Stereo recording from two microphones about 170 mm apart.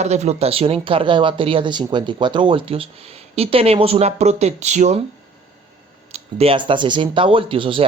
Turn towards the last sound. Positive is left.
turn(degrees=-30)  # may be behind; listen again after turning